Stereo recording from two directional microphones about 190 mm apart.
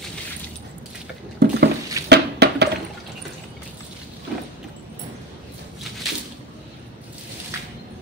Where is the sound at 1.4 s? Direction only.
60° right (ahead or behind).